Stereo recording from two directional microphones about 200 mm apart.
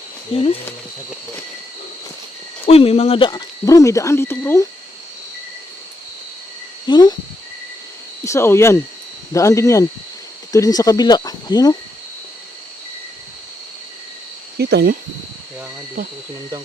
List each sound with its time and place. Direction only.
0.3 s speech: 30° left (ahead or behind)
2.6 s speech: 30° left (ahead or behind); by 4.7 s 15° left (ahead or behind)
6.8 s speech: 20° left (ahead or behind)
8.2 s speech: 15° left (ahead or behind)
14.6 s speech: 55° right (ahead or behind)